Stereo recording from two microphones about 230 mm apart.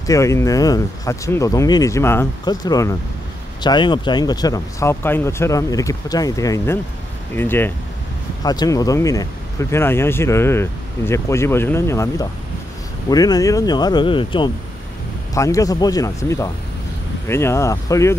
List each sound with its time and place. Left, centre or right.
0.0 s speech: centre